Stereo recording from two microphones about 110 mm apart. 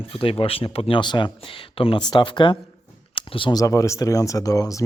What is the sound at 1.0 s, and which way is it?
Speech, 45° left (ahead or behind).